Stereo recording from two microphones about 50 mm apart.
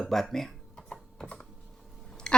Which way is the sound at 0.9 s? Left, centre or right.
Centre.